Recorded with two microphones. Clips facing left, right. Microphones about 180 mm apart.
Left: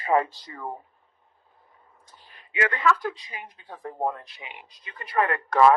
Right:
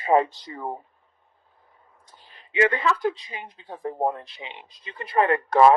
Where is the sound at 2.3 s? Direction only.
25° right (ahead or behind).